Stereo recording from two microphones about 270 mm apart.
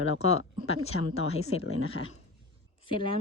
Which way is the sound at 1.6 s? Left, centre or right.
Left.